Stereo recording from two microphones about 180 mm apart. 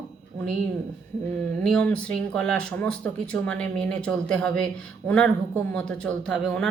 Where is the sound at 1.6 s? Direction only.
5° left (ahead or behind).